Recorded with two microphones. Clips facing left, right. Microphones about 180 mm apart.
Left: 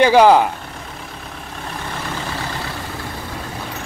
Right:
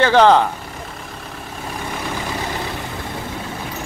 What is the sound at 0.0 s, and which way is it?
Speech, 10° left (ahead or behind).